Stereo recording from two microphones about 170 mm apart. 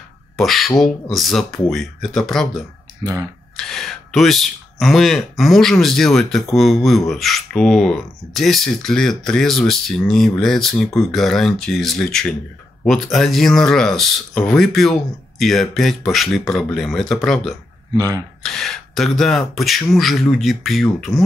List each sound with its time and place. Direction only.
0.4 s speech: centre (ahead or behind)
3.0 s speech: 25° right (ahead or behind)
3.5 s speech: centre (ahead or behind)
17.9 s speech: 20° right (ahead or behind)
18.4 s speech: 5° left (ahead or behind)